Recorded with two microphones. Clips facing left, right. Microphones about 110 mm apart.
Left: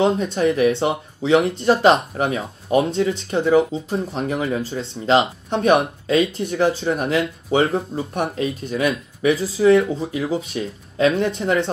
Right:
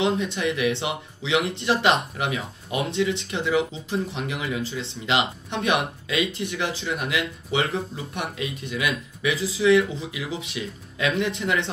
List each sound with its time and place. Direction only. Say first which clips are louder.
0.0 s speech: left 6 dB; 40° left (ahead or behind)